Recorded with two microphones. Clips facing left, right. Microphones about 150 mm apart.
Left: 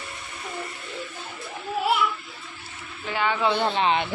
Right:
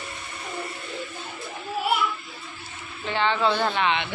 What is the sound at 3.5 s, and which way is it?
Speech, 25° left (ahead or behind).